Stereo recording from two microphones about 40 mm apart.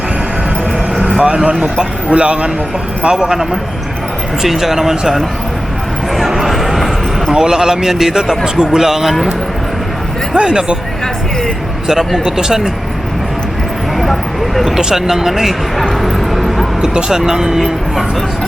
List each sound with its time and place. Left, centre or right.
1.1 s a sound: right
2.0 s speech: right; by 5.1 s centre
6.1 s a sound: centre
7.3 s speech: centre
10.3 s speech: right
11.9 s speech: centre
14.0 s a sound: centre
14.8 s speech: centre
16.8 s speech: centre